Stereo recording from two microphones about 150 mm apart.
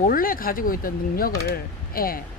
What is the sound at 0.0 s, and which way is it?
Speech, 70° left (ahead or behind).